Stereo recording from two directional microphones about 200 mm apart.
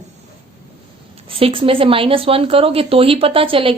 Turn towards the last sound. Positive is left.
turn(degrees=-25)  # may be behind; listen again after turning